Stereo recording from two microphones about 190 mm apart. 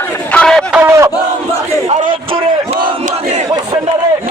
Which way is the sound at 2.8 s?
40° right (ahead or behind).